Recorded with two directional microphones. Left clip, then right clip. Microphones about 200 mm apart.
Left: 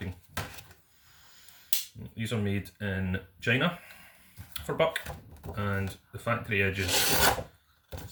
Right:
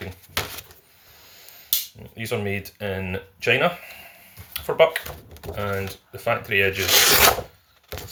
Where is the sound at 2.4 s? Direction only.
15° left (ahead or behind).